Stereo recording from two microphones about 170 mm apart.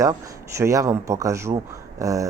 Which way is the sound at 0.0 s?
20° right (ahead or behind).